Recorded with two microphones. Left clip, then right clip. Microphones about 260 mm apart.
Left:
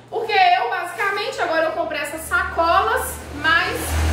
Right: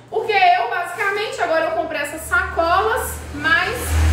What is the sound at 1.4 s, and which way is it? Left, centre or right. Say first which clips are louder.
A woman's voice: right 1 dB; centre.